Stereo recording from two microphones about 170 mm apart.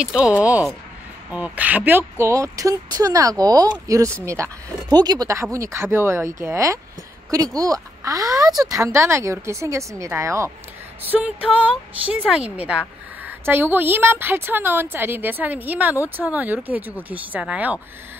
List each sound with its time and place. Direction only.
0.0 s a woman's voice: 5° right (ahead or behind)